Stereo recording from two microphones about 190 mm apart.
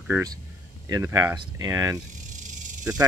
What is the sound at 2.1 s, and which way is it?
Snake, 40° right (ahead or behind).